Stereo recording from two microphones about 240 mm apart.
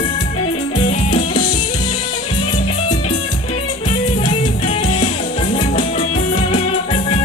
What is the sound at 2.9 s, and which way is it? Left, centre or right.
Music, left.